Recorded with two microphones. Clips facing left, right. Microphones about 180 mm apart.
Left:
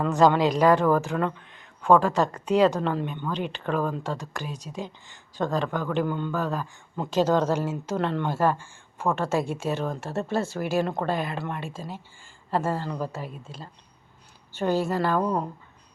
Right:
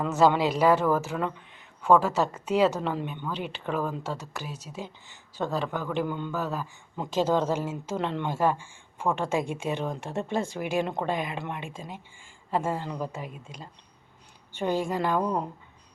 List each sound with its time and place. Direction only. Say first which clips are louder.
0.0 s speech: left 2 dB; 5° right (ahead or behind)
14.5 s speech: left 3 dB; 15° right (ahead or behind)